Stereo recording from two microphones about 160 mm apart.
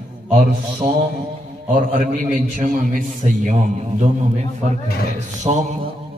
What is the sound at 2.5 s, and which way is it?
A man's voice, 55° right (ahead or behind).